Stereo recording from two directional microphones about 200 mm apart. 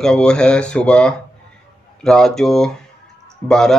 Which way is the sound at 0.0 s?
5° left (ahead or behind).